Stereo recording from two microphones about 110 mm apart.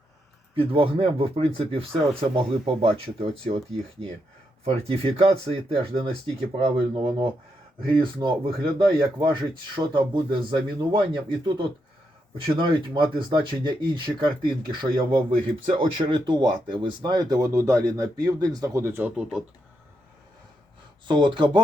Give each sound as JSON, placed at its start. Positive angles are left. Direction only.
{"t": 0.5, "sound": "speech", "side_deg": -55}
{"t": 4.6, "sound": "speech", "side_deg": -65}
{"t": 21.1, "sound": "speech", "side_deg": -45}